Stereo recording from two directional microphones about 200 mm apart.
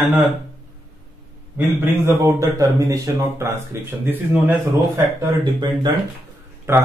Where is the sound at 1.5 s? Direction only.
10° right (ahead or behind).